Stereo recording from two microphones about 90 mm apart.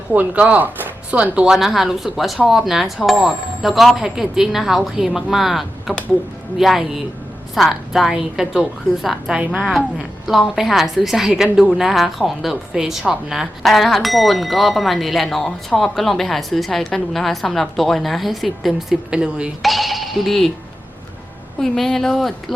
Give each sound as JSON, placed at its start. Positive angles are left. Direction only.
{"t": 0.1, "sound": "speech", "side_deg": -20}
{"t": 1.5, "sound": "a woman's voice", "side_deg": -5}
{"t": 21.6, "sound": "a woman's voice", "side_deg": 5}